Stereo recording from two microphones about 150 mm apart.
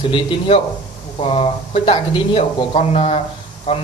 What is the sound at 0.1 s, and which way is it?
A man's voice, 35° left (ahead or behind).